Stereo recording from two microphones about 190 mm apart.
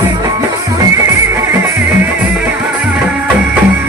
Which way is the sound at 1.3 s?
10° right (ahead or behind).